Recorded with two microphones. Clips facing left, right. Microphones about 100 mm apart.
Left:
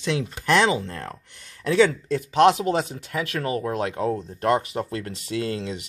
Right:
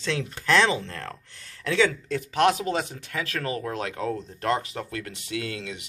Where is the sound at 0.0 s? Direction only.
15° left (ahead or behind).